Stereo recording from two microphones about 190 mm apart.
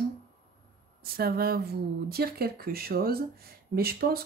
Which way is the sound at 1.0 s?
55° right (ahead or behind).